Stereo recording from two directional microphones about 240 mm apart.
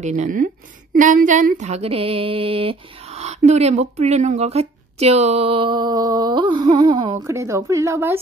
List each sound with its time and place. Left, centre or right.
0.0 s speech: right; by 8.2 s centre